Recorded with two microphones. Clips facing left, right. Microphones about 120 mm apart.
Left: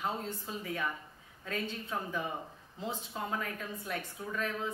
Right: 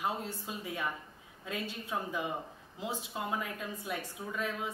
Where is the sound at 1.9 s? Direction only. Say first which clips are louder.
Right 2 dB; 15° right (ahead or behind).